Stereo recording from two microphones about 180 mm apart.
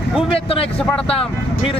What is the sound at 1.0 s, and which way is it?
Speech, 30° left (ahead or behind).